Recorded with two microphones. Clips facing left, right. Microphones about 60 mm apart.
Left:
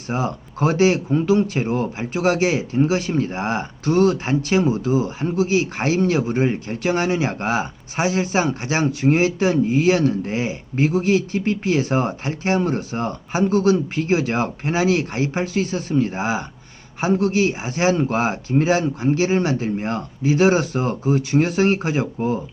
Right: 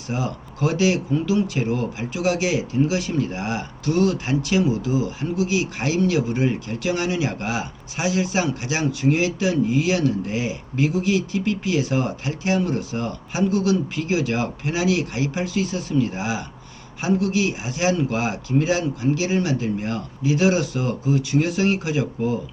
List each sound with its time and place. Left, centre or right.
0.1 s speech: left